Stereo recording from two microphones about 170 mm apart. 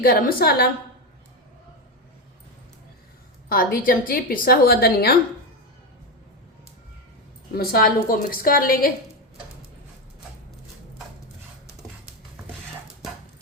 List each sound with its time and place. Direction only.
0.0 s a woman's voice: 60° left (ahead or behind)
3.5 s a woman's voice: 55° left (ahead or behind)
7.5 s a woman's voice: 60° left (ahead or behind)